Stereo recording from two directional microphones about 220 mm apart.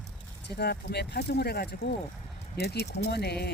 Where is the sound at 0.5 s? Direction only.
45° left (ahead or behind).